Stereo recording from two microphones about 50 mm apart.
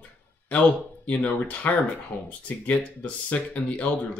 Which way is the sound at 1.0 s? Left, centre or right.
Left.